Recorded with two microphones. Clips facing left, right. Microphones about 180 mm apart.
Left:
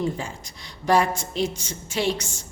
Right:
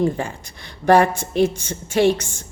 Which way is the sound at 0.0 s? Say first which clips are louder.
Right 6 dB; 60° right (ahead or behind).